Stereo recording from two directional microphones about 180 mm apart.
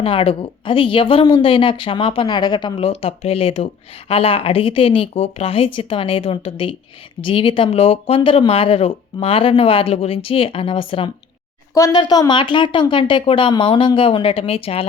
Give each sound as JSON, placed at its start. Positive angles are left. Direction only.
{"t": 0.0, "sound": "speech", "side_deg": 30}